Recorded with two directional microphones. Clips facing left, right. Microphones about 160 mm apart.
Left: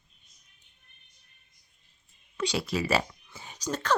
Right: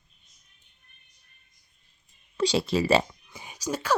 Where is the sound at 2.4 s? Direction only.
30° right (ahead or behind); by 3.9 s 10° right (ahead or behind).